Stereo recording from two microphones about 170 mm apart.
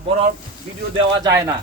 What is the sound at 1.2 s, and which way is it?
Speech, 20° right (ahead or behind).